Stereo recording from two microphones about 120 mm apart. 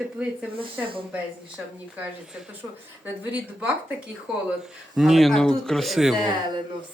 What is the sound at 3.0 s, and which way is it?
Speech, 15° right (ahead or behind).